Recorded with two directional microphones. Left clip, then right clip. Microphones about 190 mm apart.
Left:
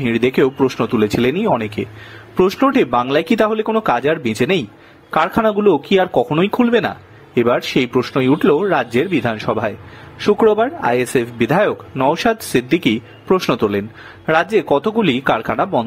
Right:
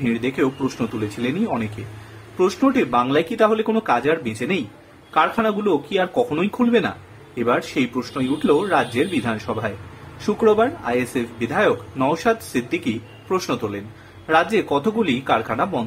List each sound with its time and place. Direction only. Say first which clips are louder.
0.1 s speech: left 8 dB; 45° left (ahead or behind)
2.3 s speech: left 5 dB; 45° left (ahead or behind)